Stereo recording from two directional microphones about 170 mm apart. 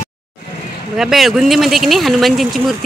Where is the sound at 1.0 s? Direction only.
Centre (ahead or behind).